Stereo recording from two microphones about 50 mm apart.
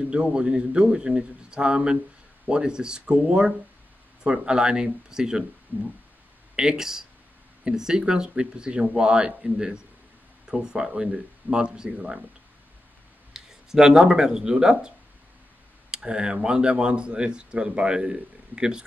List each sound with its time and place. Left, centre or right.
0.1 s a man's voice: centre
13.3 s speech: centre
15.9 s speech: centre